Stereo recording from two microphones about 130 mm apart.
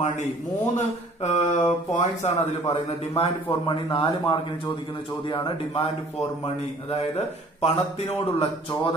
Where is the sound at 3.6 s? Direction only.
40° left (ahead or behind).